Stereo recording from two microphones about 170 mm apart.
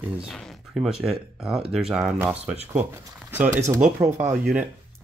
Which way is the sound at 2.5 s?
40° right (ahead or behind).